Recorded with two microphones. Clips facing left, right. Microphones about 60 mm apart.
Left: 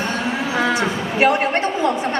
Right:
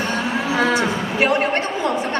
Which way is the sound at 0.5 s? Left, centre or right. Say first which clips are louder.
Right 2 dB; left.